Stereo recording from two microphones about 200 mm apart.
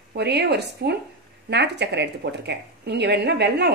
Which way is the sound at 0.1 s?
55° right (ahead or behind).